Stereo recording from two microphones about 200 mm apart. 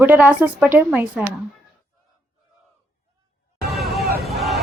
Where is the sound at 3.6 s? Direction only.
Centre (ahead or behind).